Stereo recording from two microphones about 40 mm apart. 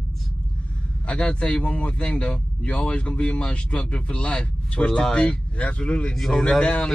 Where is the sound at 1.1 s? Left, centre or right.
Left.